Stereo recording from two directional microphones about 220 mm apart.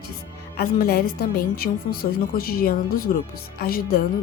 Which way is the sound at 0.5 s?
45° left (ahead or behind).